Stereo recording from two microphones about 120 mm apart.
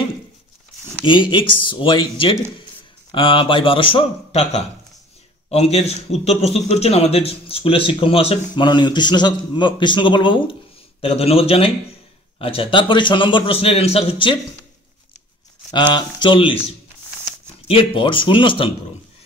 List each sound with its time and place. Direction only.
1.0 s a man's voice: 40° left (ahead or behind)
8.6 s a man's voice: 40° left (ahead or behind)
11.0 s a man's voice: 55° left (ahead or behind)
15.7 s a man's voice: 40° left (ahead or behind)
17.6 s a man's voice: 50° left (ahead or behind)